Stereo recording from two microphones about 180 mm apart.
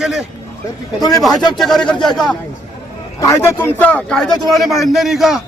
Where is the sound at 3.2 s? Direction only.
15° left (ahead or behind); by 5.4 s centre (ahead or behind).